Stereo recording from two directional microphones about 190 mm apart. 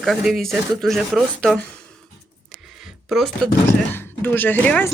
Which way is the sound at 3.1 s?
Centre (ahead or behind).